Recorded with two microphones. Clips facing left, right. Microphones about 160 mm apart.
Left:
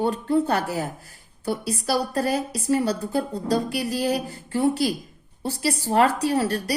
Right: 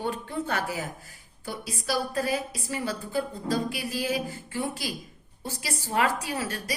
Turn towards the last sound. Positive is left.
turn(degrees=40)  # may be behind; listen again after turning